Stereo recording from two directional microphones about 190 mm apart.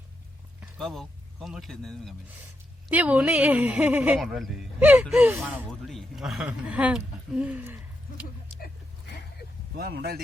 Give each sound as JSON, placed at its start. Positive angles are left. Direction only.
{"t": 0.8, "sound": "speech", "side_deg": 0}
{"t": 8.5, "sound": "a sound", "side_deg": 50}
{"t": 9.7, "sound": "speech", "side_deg": -55}